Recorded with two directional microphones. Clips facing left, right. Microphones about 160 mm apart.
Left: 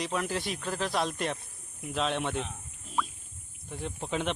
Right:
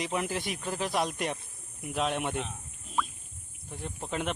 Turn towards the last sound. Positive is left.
turn(degrees=-5)  # may be behind; listen again after turning